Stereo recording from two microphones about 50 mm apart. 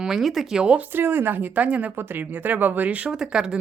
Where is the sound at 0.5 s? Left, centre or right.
Centre.